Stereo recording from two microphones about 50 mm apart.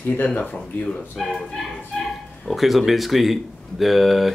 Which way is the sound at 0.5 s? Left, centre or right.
Centre.